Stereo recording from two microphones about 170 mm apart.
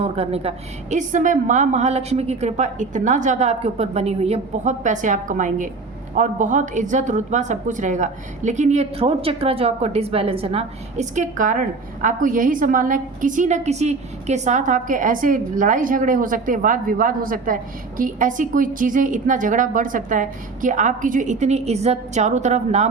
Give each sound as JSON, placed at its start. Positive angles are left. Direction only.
{"t": 0.0, "sound": "a woman's voice", "side_deg": -35}